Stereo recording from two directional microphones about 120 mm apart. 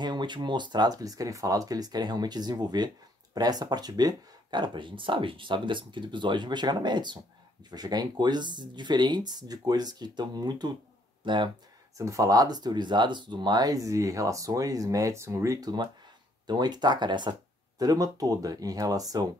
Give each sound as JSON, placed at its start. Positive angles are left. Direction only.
{"t": 0.0, "sound": "speech", "side_deg": -40}
{"t": 12.0, "sound": "speech", "side_deg": -25}